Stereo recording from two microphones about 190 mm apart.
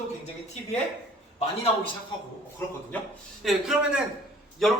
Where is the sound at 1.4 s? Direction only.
30° left (ahead or behind).